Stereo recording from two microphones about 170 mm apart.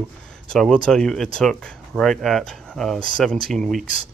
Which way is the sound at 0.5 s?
5° left (ahead or behind).